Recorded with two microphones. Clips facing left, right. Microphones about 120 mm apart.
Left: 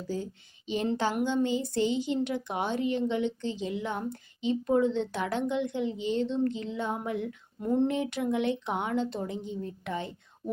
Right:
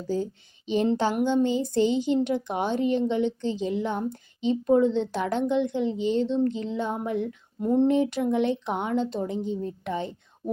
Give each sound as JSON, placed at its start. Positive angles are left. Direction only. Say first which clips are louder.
{"t": 0.7, "sound": "a child's voice", "louder": "right 5 dB", "side_deg": -25}
{"t": 7.6, "sound": "a sound", "louder": "right 5 dB", "side_deg": -20}
{"t": 7.9, "sound": "a child's voice", "louder": "right 6 dB", "side_deg": -30}